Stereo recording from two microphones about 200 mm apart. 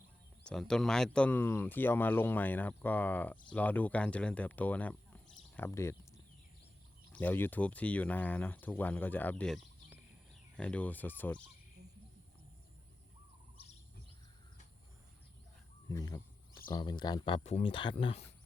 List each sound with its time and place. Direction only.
0.4 s speech: 5° left (ahead or behind)
7.1 s speech: 10° left (ahead or behind)
10.6 s speech: 5° left (ahead or behind)
15.9 s speech: 20° left (ahead or behind)